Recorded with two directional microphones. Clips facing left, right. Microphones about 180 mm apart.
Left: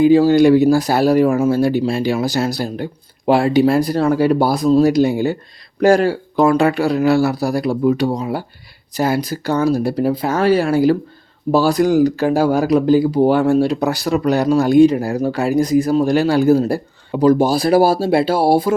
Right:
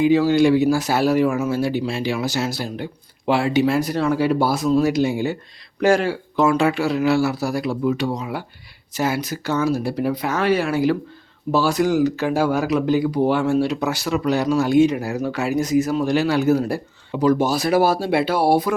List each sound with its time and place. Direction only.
0.0 s speech: 35° left (ahead or behind)